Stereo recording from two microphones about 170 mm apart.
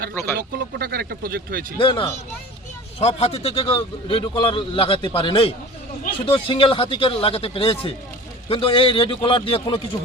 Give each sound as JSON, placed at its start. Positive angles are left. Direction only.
{"t": 0.3, "sound": "speech", "side_deg": -60}
{"t": 1.8, "sound": "a man's voice", "side_deg": 30}